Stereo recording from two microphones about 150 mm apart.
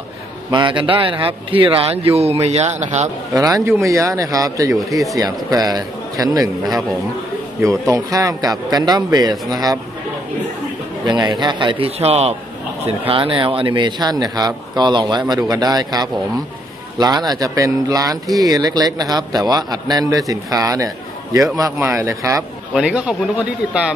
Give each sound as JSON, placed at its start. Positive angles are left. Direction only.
{"t": 0.5, "sound": "speech", "side_deg": -30}
{"t": 3.3, "sound": "a man's voice", "side_deg": -25}
{"t": 7.6, "sound": "a man's voice", "side_deg": -20}
{"t": 11.1, "sound": "a man's voice", "side_deg": -30}
{"t": 22.8, "sound": "speech", "side_deg": -5}